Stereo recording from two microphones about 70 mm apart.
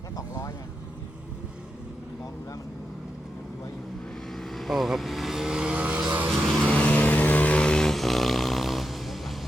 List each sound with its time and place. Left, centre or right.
0.2 s vehicle: left
4.3 s vehicle: centre; by 6.3 s right
6.3 s vehicle: centre